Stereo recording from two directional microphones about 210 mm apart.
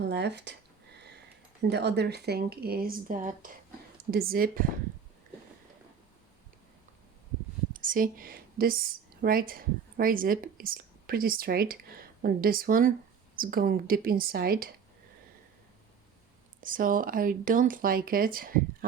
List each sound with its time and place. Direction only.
0.0 s speech: 55° right (ahead or behind)
1.6 s speech: 50° right (ahead or behind)
7.7 s speech: 40° right (ahead or behind)
16.6 s speech: 40° right (ahead or behind)